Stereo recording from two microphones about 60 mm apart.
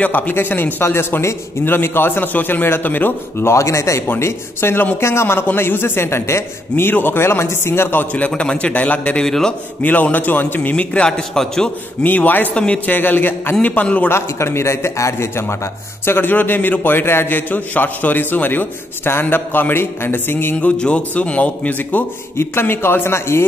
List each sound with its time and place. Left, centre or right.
0.0 s a man's voice: left
3.4 s speech: left
4.2 s a man's voice: left
6.9 s a man's voice: left
8.3 s a man's voice: centre
9.2 s a man's voice: centre
9.8 s a man's voice: left; by 11.7 s centre
12.0 s a man's voice: left
12.5 s a man's voice: centre
12.9 s a man's voice: left
14.1 s a man's voice: left
16.1 s a man's voice: left
20.5 s a man's voice: centre
22.4 s a man's voice: left